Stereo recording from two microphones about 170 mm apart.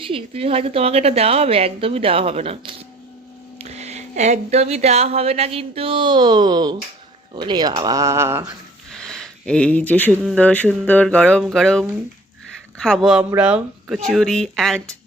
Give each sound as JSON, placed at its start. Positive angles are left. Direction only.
{"t": 0.0, "sound": "speech", "side_deg": -35}
{"t": 8.9, "sound": "a sound", "side_deg": 5}
{"t": 10.2, "sound": "speech", "side_deg": 10}